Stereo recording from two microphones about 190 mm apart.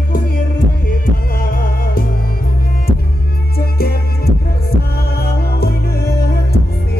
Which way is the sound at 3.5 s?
55° left (ahead or behind).